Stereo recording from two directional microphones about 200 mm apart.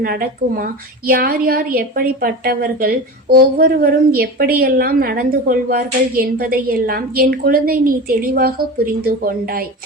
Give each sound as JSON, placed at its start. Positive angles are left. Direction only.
{"t": 0.0, "sound": "a woman's voice", "side_deg": -45}